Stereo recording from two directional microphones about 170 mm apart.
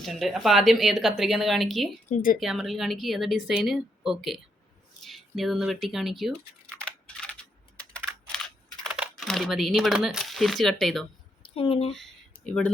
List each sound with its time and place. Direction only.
0.0 s a woman's voice: centre (ahead or behind)
2.0 s speech: 55° left (ahead or behind)
2.4 s a woman's voice: centre (ahead or behind)
6.8 s computer keyboard: 5° left (ahead or behind)
8.8 s speech: centre (ahead or behind)
11.5 s speech: 35° left (ahead or behind)
11.9 s a sound: 5° left (ahead or behind)